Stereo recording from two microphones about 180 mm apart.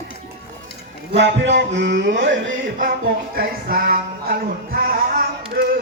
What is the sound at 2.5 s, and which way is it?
Music, 50° right (ahead or behind).